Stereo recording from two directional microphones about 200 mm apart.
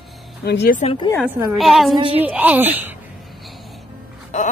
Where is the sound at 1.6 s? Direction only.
Centre (ahead or behind).